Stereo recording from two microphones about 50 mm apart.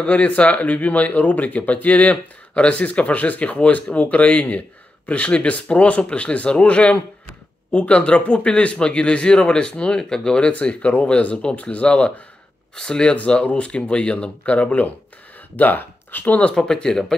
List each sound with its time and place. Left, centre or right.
0.0 s speech: left
16.5 s speech: centre